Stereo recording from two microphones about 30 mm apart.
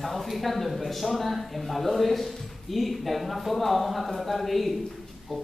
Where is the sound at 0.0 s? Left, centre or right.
Centre.